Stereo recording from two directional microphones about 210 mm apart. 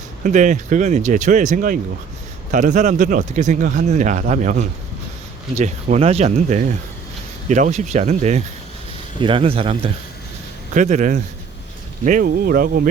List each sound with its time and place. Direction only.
0.2 s speech: 35° right (ahead or behind)